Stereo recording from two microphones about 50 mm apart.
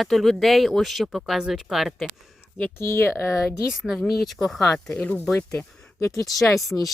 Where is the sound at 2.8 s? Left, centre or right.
Left.